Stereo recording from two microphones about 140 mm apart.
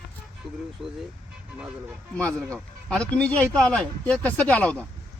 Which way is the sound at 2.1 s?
10° left (ahead or behind).